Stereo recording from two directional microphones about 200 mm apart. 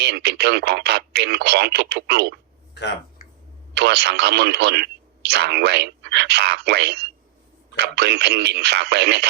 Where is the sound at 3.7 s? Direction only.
55° right (ahead or behind).